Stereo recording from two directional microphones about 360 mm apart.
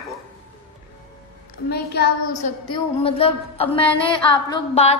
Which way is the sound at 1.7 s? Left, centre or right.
Left.